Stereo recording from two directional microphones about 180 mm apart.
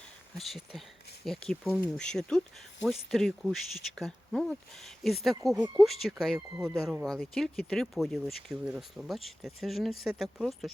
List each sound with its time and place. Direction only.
0.3 s speech: centre (ahead or behind)
5.5 s speech: 20° right (ahead or behind)
5.8 s speech: centre (ahead or behind)